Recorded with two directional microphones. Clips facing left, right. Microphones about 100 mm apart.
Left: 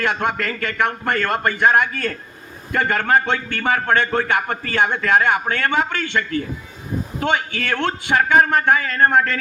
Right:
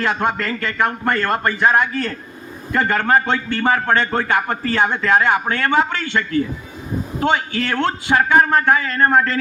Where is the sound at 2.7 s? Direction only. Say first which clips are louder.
Right 1 dB; 40° right (ahead or behind).